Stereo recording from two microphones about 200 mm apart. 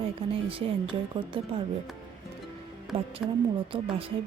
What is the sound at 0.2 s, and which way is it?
A woman's voice, 25° right (ahead or behind).